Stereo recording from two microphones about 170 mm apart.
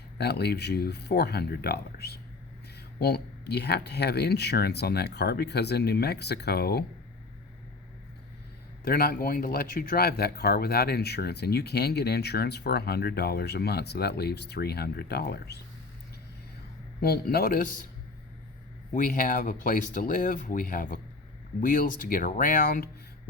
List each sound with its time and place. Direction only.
0.2 s speech: 70° left (ahead or behind)
8.8 s speech: 60° left (ahead or behind)
17.0 s speech: 65° left (ahead or behind)
18.9 s speech: 50° left (ahead or behind)